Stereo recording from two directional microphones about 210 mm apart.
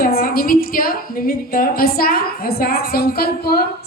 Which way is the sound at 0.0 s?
45° left (ahead or behind).